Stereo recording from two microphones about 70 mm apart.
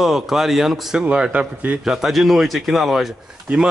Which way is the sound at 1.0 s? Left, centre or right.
Centre.